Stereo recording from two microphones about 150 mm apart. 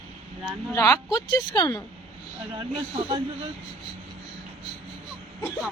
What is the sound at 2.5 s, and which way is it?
Speech, 35° right (ahead or behind).